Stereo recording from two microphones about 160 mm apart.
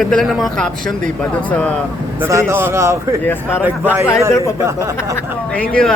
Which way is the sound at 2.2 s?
15° right (ahead or behind).